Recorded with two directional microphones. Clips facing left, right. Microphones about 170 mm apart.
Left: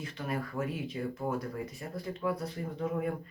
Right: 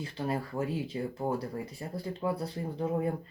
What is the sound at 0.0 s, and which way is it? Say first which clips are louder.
Speech: right 3 dB; 30° right (ahead or behind).